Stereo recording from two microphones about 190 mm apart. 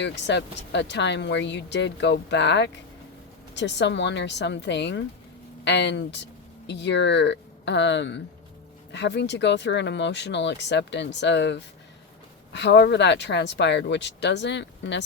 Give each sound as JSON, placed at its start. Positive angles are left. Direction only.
{"t": 0.0, "sound": "speech", "side_deg": 65}